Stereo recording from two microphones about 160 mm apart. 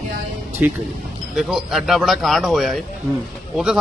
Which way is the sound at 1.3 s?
Centre (ahead or behind).